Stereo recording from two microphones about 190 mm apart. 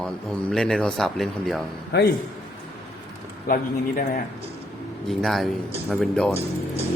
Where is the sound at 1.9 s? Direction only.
60° left (ahead or behind).